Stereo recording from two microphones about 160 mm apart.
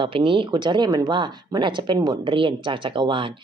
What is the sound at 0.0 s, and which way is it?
Speech, 35° right (ahead or behind).